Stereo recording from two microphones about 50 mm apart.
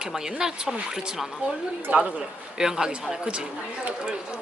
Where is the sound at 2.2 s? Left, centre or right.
Centre.